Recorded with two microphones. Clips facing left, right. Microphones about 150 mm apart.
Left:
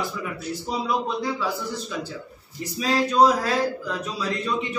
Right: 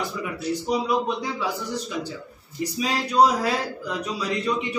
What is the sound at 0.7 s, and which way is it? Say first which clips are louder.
Speech: right 2 dB; 15° right (ahead or behind).